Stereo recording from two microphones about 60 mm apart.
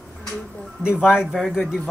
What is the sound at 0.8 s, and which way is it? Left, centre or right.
Speech, centre.